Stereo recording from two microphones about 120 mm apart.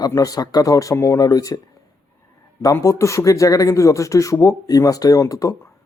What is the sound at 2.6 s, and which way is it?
Speech, 25° left (ahead or behind).